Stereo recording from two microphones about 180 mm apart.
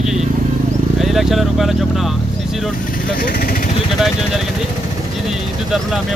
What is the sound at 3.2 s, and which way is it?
Speech, 55° left (ahead or behind).